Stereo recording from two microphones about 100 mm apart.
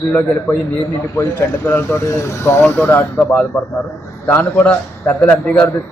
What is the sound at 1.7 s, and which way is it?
A man's voice, 20° left (ahead or behind).